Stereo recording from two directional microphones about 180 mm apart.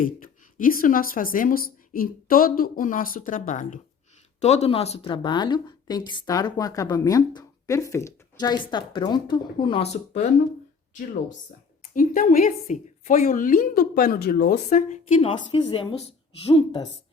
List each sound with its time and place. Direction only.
0.0 s speech: 50° left (ahead or behind)
11.9 s speech: 50° left (ahead or behind)
14.7 s speech: 40° left (ahead or behind)